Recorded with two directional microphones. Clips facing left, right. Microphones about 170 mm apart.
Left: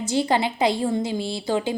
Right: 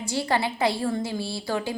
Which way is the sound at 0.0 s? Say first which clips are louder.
Left 4 dB; 20° left (ahead or behind).